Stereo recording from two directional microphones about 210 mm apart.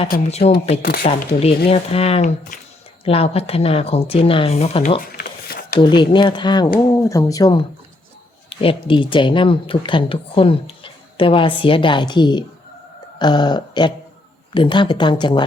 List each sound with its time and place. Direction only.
0.1 s speech: 30° left (ahead or behind)
0.8 s speech: 45° left (ahead or behind)
1.7 s speech: 30° left (ahead or behind)
4.9 s a sound: 45° left (ahead or behind)
5.8 s speech: 20° left (ahead or behind)
13.1 s a sound: 20° left (ahead or behind)
14.5 s speech: 20° left (ahead or behind)